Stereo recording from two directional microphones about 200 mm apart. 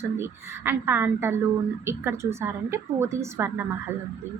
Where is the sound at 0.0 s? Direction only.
10° right (ahead or behind).